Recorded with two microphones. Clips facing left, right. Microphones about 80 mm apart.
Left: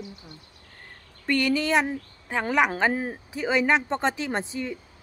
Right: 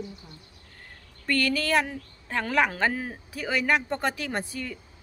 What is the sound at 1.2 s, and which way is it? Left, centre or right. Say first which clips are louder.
Speech: left 2 dB; centre.